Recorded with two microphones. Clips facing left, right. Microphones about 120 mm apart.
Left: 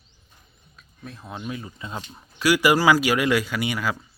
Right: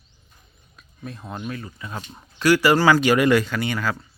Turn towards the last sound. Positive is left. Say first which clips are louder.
# right 1 dB
turn(degrees=10)  # may be behind; listen again after turning